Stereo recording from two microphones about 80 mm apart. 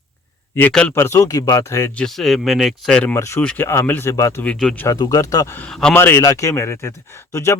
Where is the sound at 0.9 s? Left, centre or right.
Left.